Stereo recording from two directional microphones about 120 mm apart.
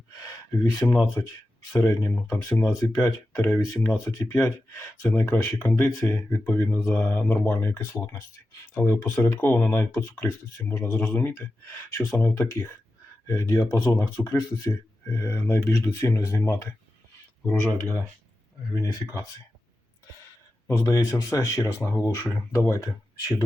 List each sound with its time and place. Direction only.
0.2 s speech: 30° left (ahead or behind)
20.7 s speech: 25° left (ahead or behind)